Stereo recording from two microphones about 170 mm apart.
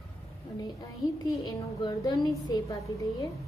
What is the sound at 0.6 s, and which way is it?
A woman's voice, 20° left (ahead or behind).